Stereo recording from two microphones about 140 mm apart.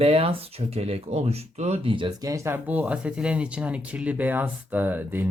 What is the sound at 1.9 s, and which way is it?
Speech, 30° right (ahead or behind).